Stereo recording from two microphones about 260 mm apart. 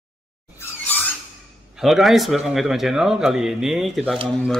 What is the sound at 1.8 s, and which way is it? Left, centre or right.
Speech, centre.